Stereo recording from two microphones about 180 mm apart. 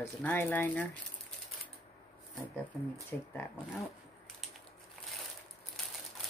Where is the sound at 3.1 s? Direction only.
5° left (ahead or behind).